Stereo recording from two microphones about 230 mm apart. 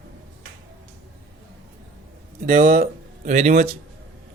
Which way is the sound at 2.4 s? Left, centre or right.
Right.